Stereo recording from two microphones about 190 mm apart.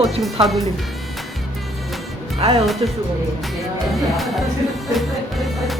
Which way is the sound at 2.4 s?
35° right (ahead or behind).